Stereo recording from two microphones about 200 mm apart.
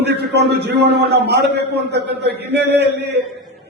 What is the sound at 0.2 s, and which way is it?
A man's voice, 55° right (ahead or behind).